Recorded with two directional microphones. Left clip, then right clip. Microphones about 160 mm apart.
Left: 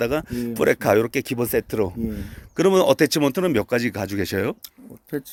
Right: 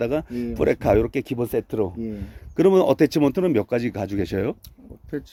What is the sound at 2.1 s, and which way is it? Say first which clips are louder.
Speech: left 1 dB; 5° right (ahead or behind).